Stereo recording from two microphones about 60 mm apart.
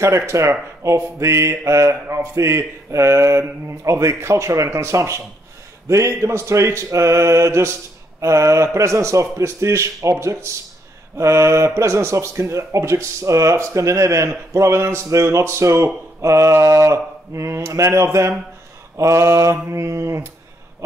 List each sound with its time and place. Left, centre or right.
0.0 s speech: right
4.6 s speech: right
11.1 s speech: right